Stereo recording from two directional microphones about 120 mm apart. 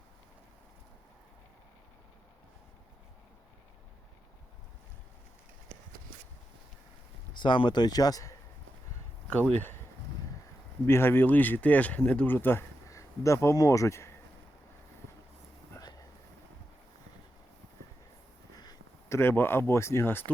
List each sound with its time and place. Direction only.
7.3 s speech: 45° left (ahead or behind)
10.8 s speech: 20° left (ahead or behind)
15.8 s vehicle: 35° left (ahead or behind)
18.5 s speech: 30° left (ahead or behind)